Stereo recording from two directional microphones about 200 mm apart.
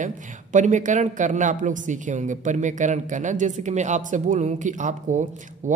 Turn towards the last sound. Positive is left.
turn(degrees=-40)  # may be behind; listen again after turning